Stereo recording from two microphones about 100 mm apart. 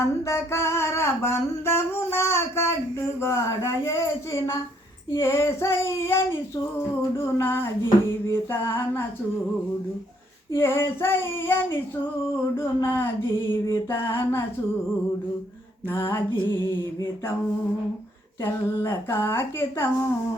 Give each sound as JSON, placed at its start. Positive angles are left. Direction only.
{"t": 0.0, "sound": "a sound", "side_deg": 30}
{"t": 3.2, "sound": "music", "side_deg": 30}
{"t": 7.3, "sound": "music", "side_deg": 25}
{"t": 10.5, "sound": "music", "side_deg": 25}
{"t": 15.9, "sound": "music", "side_deg": 20}
{"t": 18.4, "sound": "music", "side_deg": 25}